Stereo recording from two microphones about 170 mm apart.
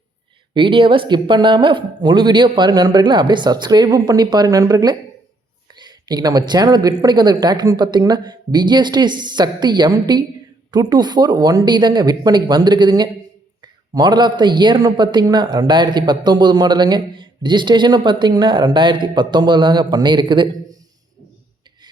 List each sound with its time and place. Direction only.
0.5 s a man's voice: 30° right (ahead or behind)